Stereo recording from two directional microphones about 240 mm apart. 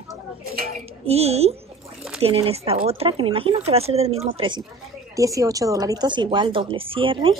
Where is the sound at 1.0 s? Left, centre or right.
Right.